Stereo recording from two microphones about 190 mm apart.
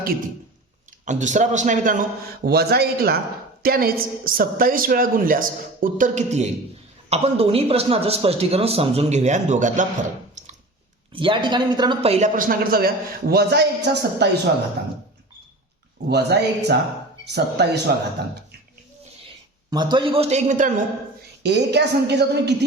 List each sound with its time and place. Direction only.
1.0 s a man's voice: 40° right (ahead or behind)
11.1 s speech: 25° right (ahead or behind)
12.4 s a man's voice: 50° right (ahead or behind)
16.0 s a man's voice: 60° right (ahead or behind)
19.7 s a man's voice: 25° right (ahead or behind); by 20.8 s 40° right (ahead or behind)
21.4 s a man's voice: 65° right (ahead or behind)